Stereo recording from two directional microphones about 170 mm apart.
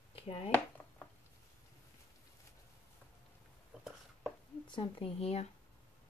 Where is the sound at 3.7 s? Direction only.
5° right (ahead or behind).